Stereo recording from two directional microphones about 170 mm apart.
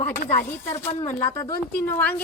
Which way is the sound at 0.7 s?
20° left (ahead or behind).